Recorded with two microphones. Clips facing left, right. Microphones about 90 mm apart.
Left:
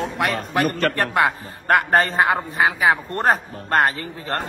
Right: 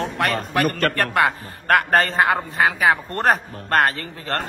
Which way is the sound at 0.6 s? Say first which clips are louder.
Even; 45° right (ahead or behind).